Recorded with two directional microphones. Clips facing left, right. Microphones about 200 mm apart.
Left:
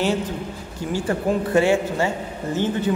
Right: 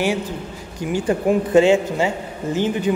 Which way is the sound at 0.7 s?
15° right (ahead or behind).